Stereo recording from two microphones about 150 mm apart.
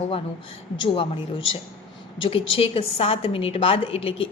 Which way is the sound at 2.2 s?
40° left (ahead or behind).